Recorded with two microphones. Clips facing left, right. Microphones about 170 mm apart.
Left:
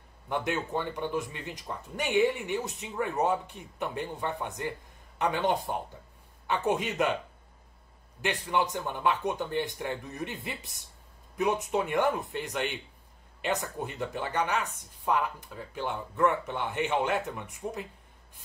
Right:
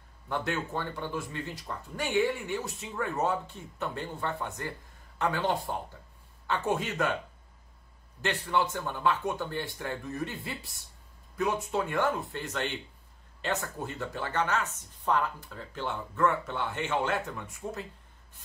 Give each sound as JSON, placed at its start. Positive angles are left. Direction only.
{"t": 0.3, "sound": "speech", "side_deg": 15}
{"t": 8.2, "sound": "speech", "side_deg": 15}